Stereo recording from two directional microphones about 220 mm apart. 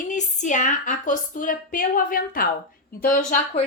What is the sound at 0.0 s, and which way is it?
A woman's voice, 35° left (ahead or behind).